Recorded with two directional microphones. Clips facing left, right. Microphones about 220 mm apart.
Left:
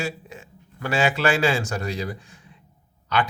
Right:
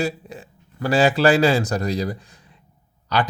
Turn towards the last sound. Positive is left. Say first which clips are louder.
# right 2 dB
turn(degrees=-35)  # may be behind; listen again after turning